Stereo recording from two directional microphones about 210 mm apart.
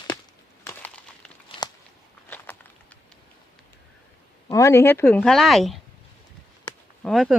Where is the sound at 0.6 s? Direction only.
10° left (ahead or behind).